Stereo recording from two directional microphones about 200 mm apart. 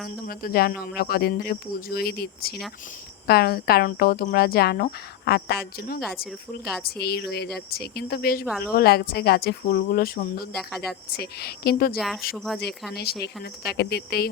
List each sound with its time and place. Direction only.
0.3 s speech: 50° left (ahead or behind)
10.5 s speech: centre (ahead or behind)
11.1 s speech: 55° left (ahead or behind)
11.9 s speech: centre (ahead or behind)
12.9 s speech: 55° left (ahead or behind)